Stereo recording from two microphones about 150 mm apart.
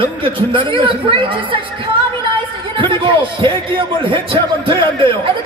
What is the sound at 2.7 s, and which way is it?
Speech, 35° right (ahead or behind).